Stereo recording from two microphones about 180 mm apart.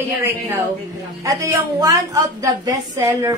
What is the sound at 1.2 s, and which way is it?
A woman's voice, 20° right (ahead or behind).